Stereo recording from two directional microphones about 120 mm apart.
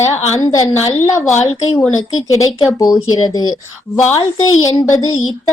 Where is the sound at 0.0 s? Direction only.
25° left (ahead or behind).